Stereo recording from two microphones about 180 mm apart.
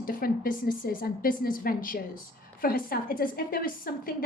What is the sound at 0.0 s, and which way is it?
A woman's voice, 55° left (ahead or behind).